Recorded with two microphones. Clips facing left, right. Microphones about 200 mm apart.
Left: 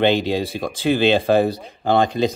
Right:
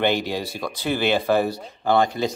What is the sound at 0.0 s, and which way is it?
Speech, 20° left (ahead or behind).